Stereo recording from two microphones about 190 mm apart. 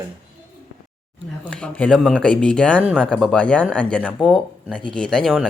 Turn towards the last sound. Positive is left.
turn(degrees=0)  # may be behind; listen again after turning